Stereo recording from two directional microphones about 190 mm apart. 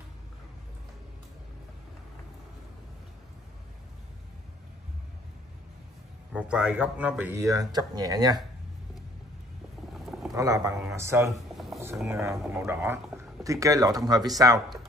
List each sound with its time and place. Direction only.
6.3 s speech: 5° right (ahead or behind)
9.9 s boat: centre (ahead or behind)
10.3 s speech: 20° right (ahead or behind)